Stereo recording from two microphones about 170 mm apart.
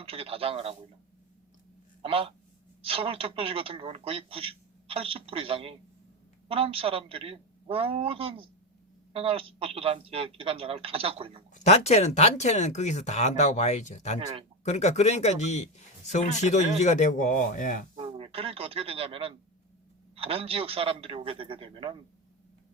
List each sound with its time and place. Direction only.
0.0 s a woman's voice: 35° right (ahead or behind)
2.0 s a man's voice: 35° right (ahead or behind)
11.5 s speech: 40° left (ahead or behind)
17.9 s a woman's voice: 30° right (ahead or behind)